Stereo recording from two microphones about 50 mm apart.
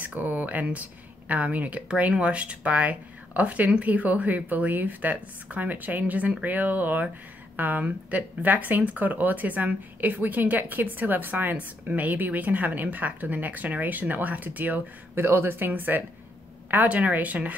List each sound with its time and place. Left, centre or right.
0.0 s speech: right
15.1 s speech: right
16.7 s speech: right